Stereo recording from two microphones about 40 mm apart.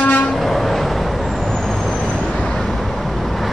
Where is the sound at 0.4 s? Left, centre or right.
Centre.